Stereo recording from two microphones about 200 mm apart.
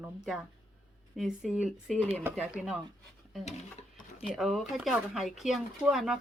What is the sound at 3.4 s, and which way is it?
Sewing machine, 35° left (ahead or behind).